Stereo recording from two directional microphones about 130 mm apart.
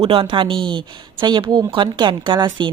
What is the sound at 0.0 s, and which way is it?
A woman's voice, 45° right (ahead or behind).